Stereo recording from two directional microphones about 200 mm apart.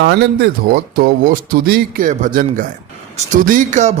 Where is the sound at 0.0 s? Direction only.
55° right (ahead or behind).